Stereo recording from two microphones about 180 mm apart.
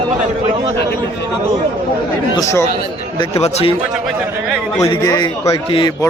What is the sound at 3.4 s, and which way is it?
Speech, 35° left (ahead or behind).